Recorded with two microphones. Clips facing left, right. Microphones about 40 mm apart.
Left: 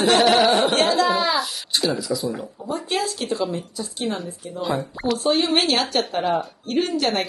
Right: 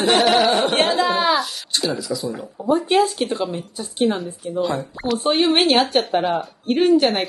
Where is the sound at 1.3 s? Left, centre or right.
Centre.